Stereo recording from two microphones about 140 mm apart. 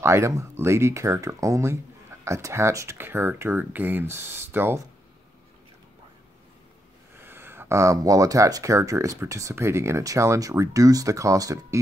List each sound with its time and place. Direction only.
0.0 s speech: 20° right (ahead or behind)
7.2 s speech: 15° right (ahead or behind)